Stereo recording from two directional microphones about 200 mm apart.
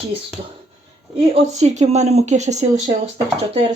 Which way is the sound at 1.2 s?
35° right (ahead or behind).